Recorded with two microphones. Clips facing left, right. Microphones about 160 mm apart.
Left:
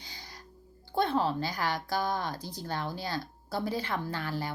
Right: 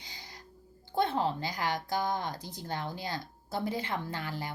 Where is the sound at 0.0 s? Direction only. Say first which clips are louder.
Left 1 dB; 20° right (ahead or behind).